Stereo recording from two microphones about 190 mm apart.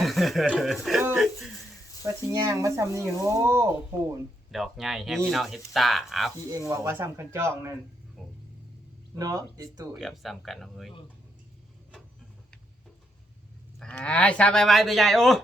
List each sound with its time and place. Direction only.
0.0 s speech: centre (ahead or behind)
2.0 s speech: 15° right (ahead or behind)
4.5 s speech: centre (ahead or behind)
6.5 s speech: 15° right (ahead or behind)
8.2 s music: centre (ahead or behind)
9.1 s speech: 20° right (ahead or behind)
10.0 s speech: centre (ahead or behind)
13.7 s speech: 5° left (ahead or behind)